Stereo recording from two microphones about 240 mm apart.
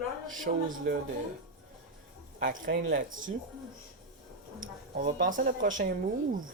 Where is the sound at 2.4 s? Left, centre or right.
Right.